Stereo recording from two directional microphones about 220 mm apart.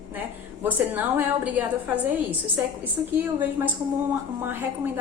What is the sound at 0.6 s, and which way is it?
A woman's voice, 10° right (ahead or behind).